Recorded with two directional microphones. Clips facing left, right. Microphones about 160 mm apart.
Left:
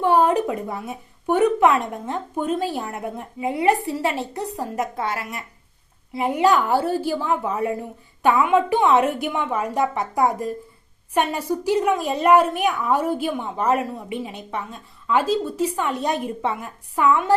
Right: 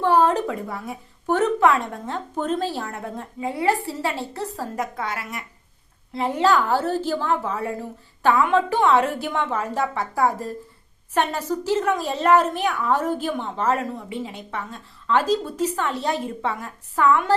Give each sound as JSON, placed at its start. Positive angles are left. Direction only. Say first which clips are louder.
{"t": 0.0, "sound": "a sound", "louder": "left 1 dB", "side_deg": 15}
{"t": 1.4, "sound": "a woman's voice", "louder": "left 2 dB", "side_deg": 15}
{"t": 6.1, "sound": "a woman's voice", "louder": "left 1 dB", "side_deg": 15}